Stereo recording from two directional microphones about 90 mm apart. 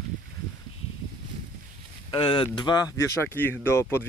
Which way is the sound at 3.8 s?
30° left (ahead or behind).